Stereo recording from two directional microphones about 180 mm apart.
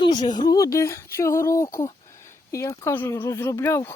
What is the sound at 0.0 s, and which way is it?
Speech, 25° left (ahead or behind).